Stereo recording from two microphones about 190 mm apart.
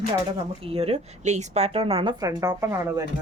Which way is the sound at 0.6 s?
30° right (ahead or behind).